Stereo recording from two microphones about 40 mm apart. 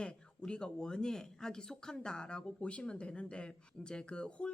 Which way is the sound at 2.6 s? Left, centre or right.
Left.